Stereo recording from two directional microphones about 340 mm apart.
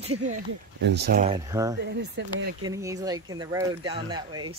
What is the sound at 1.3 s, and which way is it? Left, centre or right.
Speech, centre.